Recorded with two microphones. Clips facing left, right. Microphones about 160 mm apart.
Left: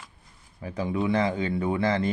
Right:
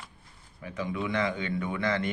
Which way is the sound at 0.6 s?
35° left (ahead or behind).